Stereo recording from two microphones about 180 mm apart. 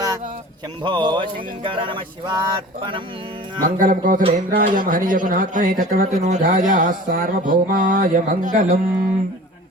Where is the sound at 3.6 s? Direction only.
50° right (ahead or behind).